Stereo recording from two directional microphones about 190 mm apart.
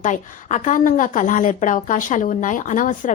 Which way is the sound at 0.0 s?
40° left (ahead or behind).